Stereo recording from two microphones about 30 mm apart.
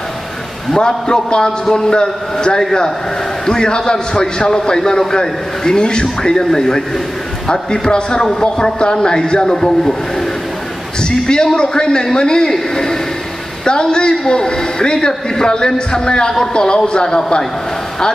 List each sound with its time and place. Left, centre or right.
0.7 s a man's voice: left
6.3 s a man's voice: centre
11.0 s a man's voice: left